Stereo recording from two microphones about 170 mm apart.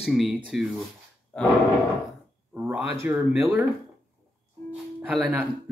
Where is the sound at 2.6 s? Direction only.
10° right (ahead or behind).